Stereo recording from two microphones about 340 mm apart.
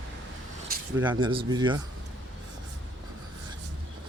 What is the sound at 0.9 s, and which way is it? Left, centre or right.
Speech, centre.